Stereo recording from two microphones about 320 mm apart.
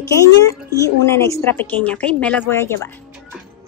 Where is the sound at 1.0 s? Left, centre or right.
Centre.